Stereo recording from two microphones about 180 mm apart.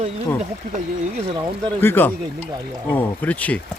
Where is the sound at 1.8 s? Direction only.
10° left (ahead or behind).